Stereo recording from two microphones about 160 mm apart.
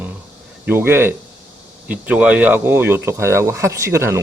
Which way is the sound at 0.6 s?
10° right (ahead or behind).